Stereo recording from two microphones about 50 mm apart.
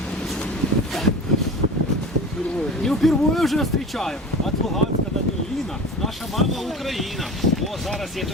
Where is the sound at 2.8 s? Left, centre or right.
Centre.